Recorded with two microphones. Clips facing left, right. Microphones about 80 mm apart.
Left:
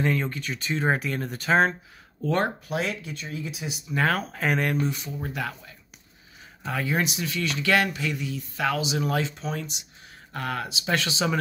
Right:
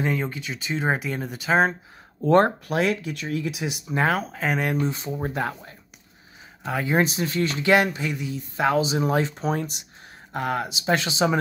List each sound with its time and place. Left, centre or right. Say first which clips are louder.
0.0 s speech: even; centre
2.2 s speech: right 7 dB; right
2.8 s speech: right 6 dB; right
3.9 s speech: right 2 dB; centre
4.2 s speech: even; centre
4.6 s speech: right 2 dB; right
6.6 s speech: right 3 dB; centre
7.0 s speech: right 5 dB; right
7.6 s speech: right 3 dB; right
8.5 s speech: right 5 dB; right
9.2 s speech: right 5 dB; right
10.3 s speech: right 4 dB; centre